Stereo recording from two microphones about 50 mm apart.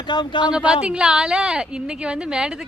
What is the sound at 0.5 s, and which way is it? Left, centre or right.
A woman's voice, centre.